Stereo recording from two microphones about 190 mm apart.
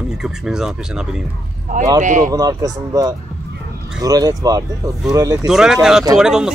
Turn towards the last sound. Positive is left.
turn(degrees=-5)  # may be behind; listen again after turning